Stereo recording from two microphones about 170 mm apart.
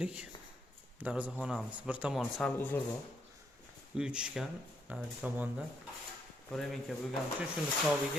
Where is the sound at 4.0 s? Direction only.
5° right (ahead or behind).